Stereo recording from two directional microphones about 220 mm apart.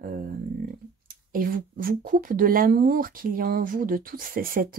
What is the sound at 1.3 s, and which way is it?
Speech, 40° right (ahead or behind).